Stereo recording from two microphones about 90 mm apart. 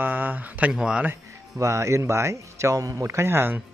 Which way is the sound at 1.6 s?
35° right (ahead or behind).